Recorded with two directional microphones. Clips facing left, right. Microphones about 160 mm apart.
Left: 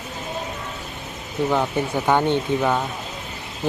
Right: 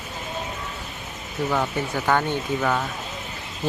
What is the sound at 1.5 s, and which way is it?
Speech, 15° left (ahead or behind).